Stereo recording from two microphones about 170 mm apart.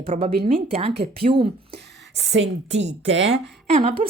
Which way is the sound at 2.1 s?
90° right.